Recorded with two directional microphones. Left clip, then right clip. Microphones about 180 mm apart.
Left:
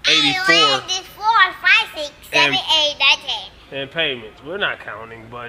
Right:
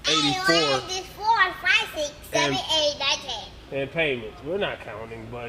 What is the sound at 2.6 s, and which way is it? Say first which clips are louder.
Speech: left 6 dB; 20° right (ahead or behind).